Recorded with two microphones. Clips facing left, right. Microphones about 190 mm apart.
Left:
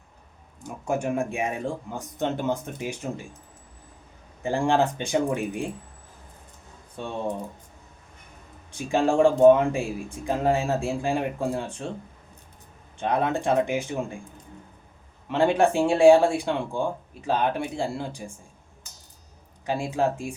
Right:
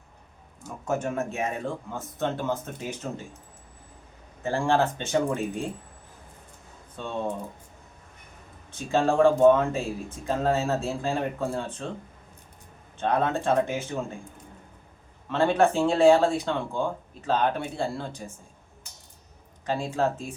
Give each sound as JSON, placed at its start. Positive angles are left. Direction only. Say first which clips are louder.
{"t": 0.9, "sound": "speech", "louder": "left 2 dB", "side_deg": 15}
{"t": 4.4, "sound": "speech", "louder": "left 1 dB", "side_deg": 15}
{"t": 6.9, "sound": "speech", "louder": "left 1 dB", "side_deg": 15}
{"t": 8.7, "sound": "speech", "louder": "left 1 dB", "side_deg": 15}
{"t": 13.0, "sound": "speech", "louder": "even", "side_deg": 15}
{"t": 15.3, "sound": "speech", "louder": "left 1 dB", "side_deg": 15}
{"t": 19.6, "sound": "speech", "louder": "left 1 dB", "side_deg": 10}